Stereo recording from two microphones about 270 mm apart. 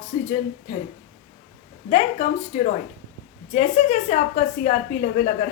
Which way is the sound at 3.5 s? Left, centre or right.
Left.